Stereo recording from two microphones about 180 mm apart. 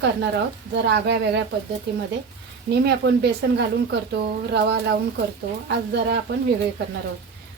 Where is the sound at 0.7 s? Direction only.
70° right (ahead or behind).